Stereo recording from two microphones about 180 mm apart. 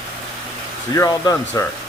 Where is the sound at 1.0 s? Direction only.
15° left (ahead or behind).